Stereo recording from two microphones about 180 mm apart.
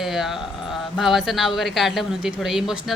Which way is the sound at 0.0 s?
Centre (ahead or behind).